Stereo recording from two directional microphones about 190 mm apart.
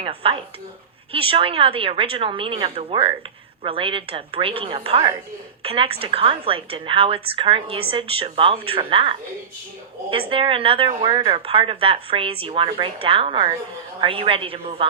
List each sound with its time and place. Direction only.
0.0 s a woman's voice: 30° right (ahead or behind)